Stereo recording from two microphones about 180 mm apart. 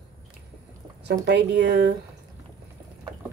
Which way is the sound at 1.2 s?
75° right (ahead or behind).